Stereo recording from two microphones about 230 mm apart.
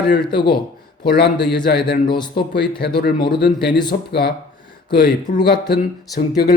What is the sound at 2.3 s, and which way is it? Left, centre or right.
Speech, left.